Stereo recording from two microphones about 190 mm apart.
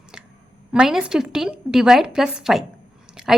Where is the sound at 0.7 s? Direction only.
5° right (ahead or behind).